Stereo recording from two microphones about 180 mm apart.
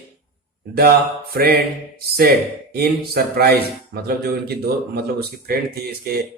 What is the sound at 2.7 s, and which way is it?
A man's voice, 60° right (ahead or behind).